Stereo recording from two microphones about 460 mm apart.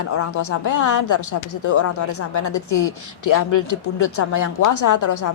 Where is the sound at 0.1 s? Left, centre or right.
Left.